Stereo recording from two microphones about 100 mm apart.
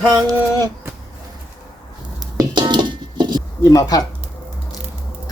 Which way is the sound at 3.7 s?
40° left (ahead or behind).